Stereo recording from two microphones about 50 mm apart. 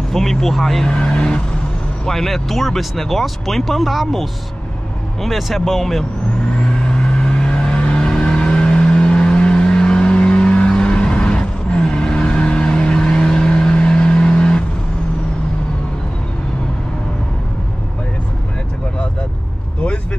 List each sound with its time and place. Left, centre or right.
0.1 s speech: centre
0.8 s speech: centre
2.0 s speech: centre
6.7 s vehicle: centre